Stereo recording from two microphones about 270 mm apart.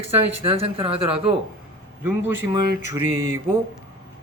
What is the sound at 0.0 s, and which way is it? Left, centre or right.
Speech, right.